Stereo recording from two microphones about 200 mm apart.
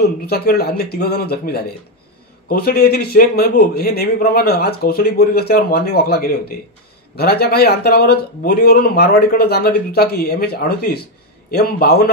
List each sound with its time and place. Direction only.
0.3 s speech: 50° left (ahead or behind)